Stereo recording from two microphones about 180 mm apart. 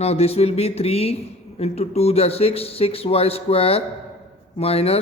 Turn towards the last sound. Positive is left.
turn(degrees=35)  # may be behind; listen again after turning